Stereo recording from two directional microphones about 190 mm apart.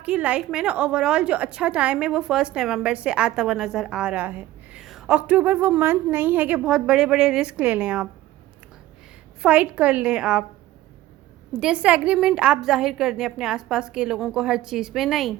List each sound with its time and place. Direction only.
0.0 s a woman's voice: 10° right (ahead or behind)
9.4 s a woman's voice: 5° right (ahead or behind)
11.6 s a woman's voice: 5° right (ahead or behind)